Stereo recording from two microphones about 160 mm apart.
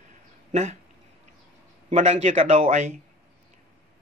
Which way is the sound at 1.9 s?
45° right (ahead or behind).